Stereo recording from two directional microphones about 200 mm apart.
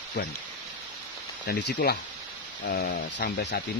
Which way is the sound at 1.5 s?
55° left (ahead or behind).